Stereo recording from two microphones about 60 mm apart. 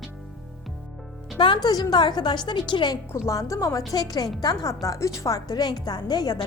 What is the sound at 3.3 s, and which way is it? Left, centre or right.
Speech, left.